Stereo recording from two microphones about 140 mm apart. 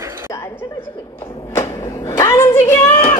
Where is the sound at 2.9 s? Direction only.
45° left (ahead or behind).